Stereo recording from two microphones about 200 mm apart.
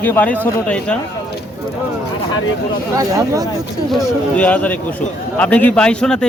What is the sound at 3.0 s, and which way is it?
Speech, 15° right (ahead or behind).